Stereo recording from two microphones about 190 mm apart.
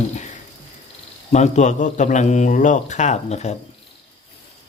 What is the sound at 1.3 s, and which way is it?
A man's voice, 35° left (ahead or behind).